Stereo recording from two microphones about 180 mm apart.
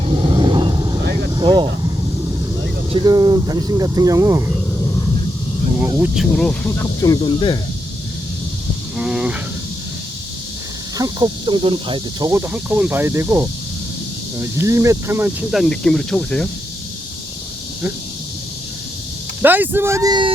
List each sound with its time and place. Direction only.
0.0 s vehicle: 25° right (ahead or behind)
2.9 s speech: 20° right (ahead or behind)
6.3 s speech: 5° left (ahead or behind)
7.2 s speech: 25° left (ahead or behind)
9.0 s a sound: 5° right (ahead or behind)
10.9 s speech: 20° right (ahead or behind)
12.3 s speech: 10° right (ahead or behind)
15.5 s speech: centre (ahead or behind)
19.4 s speech: 10° right (ahead or behind)